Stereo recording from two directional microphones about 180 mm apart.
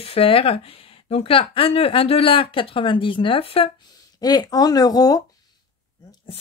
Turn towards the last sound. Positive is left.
turn(degrees=20)  # may be behind; listen again after turning